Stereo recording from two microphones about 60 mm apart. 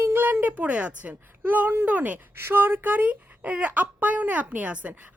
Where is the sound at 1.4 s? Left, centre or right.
Right.